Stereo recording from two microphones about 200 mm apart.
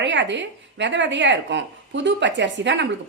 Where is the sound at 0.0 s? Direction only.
65° right (ahead or behind).